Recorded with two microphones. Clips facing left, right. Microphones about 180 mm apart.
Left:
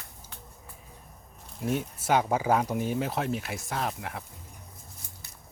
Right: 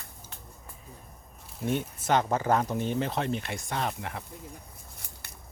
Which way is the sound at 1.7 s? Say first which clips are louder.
Even; 5° left (ahead or behind).